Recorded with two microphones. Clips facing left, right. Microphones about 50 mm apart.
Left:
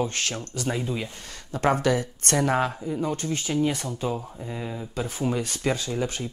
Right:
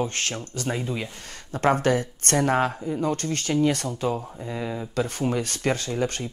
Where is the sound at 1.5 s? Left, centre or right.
Right.